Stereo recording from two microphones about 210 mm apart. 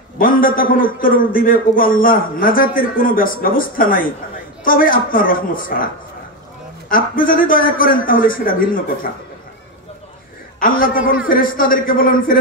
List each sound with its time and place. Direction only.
0.2 s a man's voice: 40° left (ahead or behind)
6.9 s a man's voice: 40° left (ahead or behind)
10.6 s a woman's voice: 40° left (ahead or behind)